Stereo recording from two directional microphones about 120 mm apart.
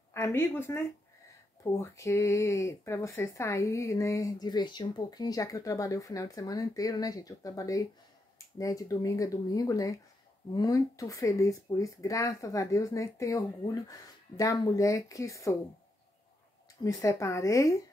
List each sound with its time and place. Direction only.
0.1 s speech: 20° left (ahead or behind)
16.8 s speech: 25° left (ahead or behind)